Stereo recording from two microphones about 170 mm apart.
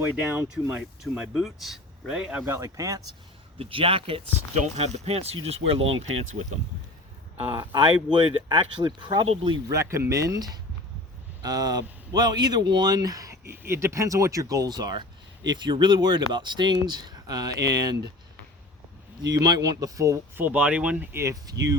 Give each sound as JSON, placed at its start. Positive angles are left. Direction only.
{"t": 0.2, "sound": "speech", "side_deg": -5}
{"t": 2.5, "sound": "speech", "side_deg": -20}
{"t": 3.6, "sound": "speech", "side_deg": -30}
{"t": 7.3, "sound": "speech", "side_deg": -25}
{"t": 9.7, "sound": "speech", "side_deg": -15}
{"t": 19.3, "sound": "speech", "side_deg": -25}